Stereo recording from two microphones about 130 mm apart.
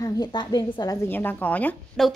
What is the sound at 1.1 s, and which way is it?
Speech, 15° left (ahead or behind).